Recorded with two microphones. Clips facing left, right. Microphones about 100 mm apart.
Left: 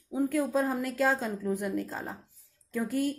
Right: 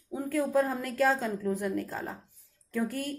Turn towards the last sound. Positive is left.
turn(degrees=15)  # may be behind; listen again after turning